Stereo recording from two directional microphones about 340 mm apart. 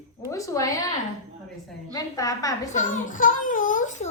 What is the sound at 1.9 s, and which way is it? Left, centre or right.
Speech, centre.